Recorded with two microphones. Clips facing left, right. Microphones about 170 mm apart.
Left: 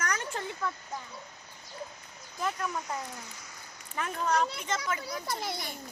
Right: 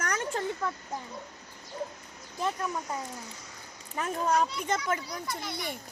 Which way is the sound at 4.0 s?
35° right (ahead or behind).